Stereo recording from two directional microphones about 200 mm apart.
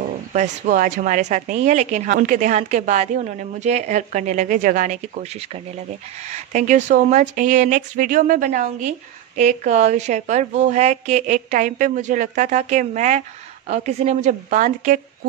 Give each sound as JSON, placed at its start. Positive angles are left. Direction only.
{"t": 0.3, "sound": "speech", "side_deg": -40}